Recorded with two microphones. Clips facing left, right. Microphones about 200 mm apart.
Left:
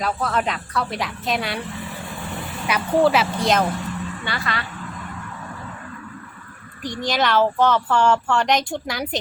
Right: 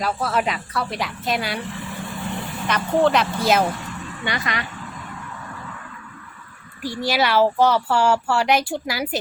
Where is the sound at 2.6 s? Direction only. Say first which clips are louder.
Left 1 dB; 5° left (ahead or behind).